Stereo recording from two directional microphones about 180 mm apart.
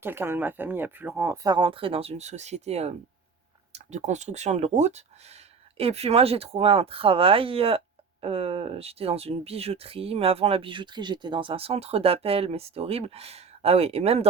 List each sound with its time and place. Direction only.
0.0 s speech: 10° right (ahead or behind)
1.5 s speech: 30° right (ahead or behind)
3.9 s speech: 40° right (ahead or behind)